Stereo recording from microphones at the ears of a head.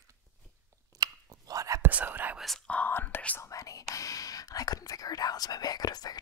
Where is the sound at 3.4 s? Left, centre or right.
Left.